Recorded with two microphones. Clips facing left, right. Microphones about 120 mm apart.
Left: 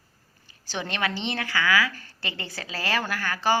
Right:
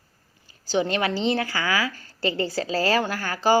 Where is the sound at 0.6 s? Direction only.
30° right (ahead or behind).